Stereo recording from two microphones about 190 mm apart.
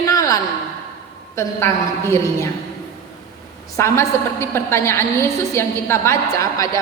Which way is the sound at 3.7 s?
15° left (ahead or behind).